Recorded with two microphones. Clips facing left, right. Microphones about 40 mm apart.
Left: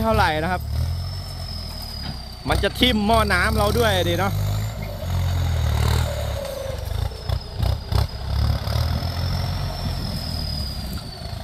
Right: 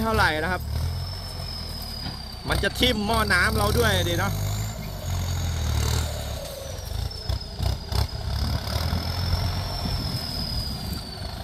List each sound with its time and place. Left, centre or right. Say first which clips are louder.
0.0 s speech: left 3 dB; centre
2.6 s speech: left 3 dB; centre
5.1 s vehicle: left 4 dB; centre
7.3 s vehicle: left 3 dB; centre